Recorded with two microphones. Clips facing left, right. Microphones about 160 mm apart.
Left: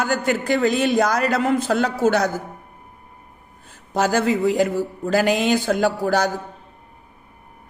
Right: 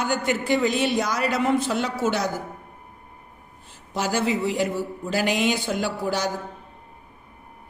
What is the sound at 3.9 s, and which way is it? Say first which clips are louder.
Speech: left 5 dB; 45° left (ahead or behind).